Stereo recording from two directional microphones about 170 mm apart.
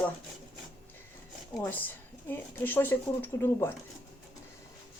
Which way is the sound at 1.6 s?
10° left (ahead or behind).